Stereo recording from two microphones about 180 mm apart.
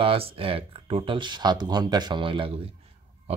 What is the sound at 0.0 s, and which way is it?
Speech, 30° right (ahead or behind).